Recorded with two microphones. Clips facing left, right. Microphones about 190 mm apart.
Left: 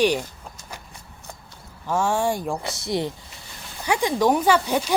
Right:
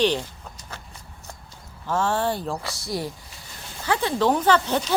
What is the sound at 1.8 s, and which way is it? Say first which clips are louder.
Speech: left 1 dB; 10° left (ahead or behind).